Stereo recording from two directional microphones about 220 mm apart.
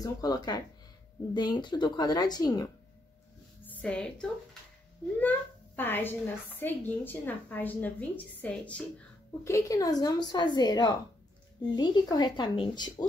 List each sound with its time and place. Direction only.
0.0 s a woman's voice: 15° left (ahead or behind)
3.6 s a child's voice: 5° left (ahead or behind)